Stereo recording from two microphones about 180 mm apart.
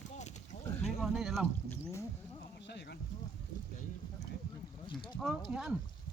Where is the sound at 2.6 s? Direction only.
75° left (ahead or behind).